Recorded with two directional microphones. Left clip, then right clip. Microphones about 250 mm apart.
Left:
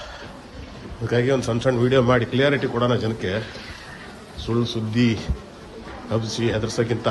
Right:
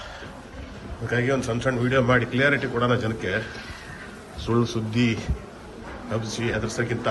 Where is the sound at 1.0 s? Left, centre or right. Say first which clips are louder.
Left 3 dB; centre.